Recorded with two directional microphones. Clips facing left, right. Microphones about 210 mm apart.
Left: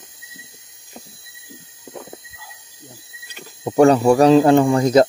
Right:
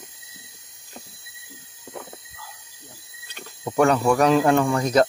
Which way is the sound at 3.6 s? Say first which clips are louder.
Left 6 dB; 30° left (ahead or behind).